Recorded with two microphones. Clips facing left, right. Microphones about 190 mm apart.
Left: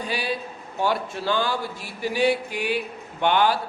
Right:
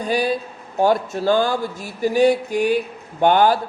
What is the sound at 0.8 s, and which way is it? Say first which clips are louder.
Speech: right 7 dB; 45° right (ahead or behind).